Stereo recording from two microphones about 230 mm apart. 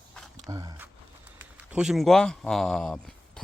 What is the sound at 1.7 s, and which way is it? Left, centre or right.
Speech, centre.